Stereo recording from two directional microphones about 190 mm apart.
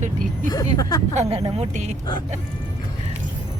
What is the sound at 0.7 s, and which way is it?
Speech, 20° left (ahead or behind).